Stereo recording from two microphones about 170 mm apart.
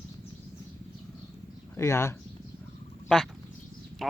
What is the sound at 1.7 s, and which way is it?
Speech, 15° left (ahead or behind).